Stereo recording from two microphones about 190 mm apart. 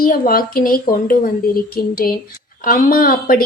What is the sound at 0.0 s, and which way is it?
A woman's voice, 50° left (ahead or behind).